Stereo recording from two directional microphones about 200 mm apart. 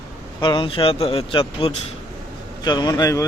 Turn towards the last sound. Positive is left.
turn(degrees=15)  # may be behind; listen again after turning